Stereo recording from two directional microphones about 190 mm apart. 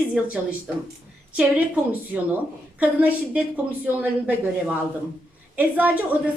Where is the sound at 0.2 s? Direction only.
5° right (ahead or behind).